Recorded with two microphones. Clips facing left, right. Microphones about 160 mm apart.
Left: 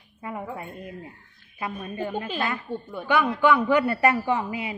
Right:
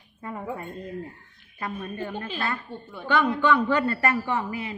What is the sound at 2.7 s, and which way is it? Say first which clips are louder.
Speech: left 6 dB; 45° left (ahead or behind).